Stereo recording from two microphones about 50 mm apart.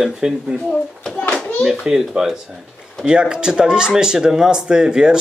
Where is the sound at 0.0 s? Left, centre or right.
Centre.